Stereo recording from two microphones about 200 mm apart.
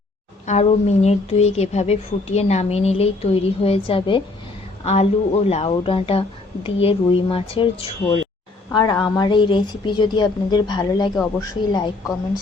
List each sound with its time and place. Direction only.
0.4 s speech: 35° left (ahead or behind)